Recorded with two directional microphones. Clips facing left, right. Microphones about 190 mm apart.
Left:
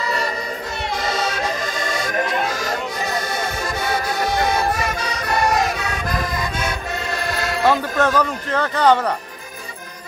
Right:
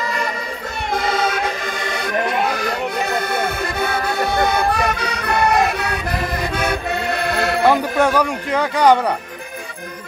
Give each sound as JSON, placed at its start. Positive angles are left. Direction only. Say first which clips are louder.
{"t": 0.9, "sound": "music", "louder": "right 4 dB", "side_deg": -55}
{"t": 7.6, "sound": "speech", "louder": "right 1 dB", "side_deg": -15}